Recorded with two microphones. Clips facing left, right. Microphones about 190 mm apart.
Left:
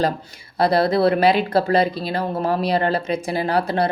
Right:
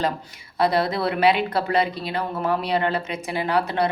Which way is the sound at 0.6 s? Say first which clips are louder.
Left 5 dB; 35° left (ahead or behind).